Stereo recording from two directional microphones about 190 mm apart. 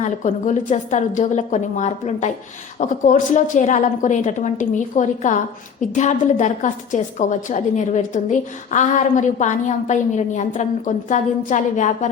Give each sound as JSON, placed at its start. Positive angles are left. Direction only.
{"t": 0.0, "sound": "a woman's voice", "side_deg": 40}